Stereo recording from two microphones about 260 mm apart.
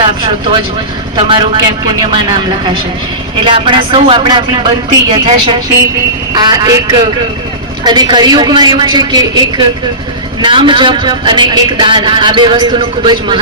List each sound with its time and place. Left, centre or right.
0.0 s a man's voice: centre
10.4 s a man's voice: centre